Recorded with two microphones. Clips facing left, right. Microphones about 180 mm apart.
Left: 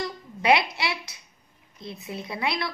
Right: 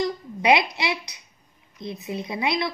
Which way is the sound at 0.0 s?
20° right (ahead or behind).